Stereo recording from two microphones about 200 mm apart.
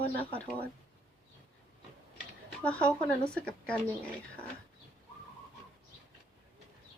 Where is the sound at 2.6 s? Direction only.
5° left (ahead or behind).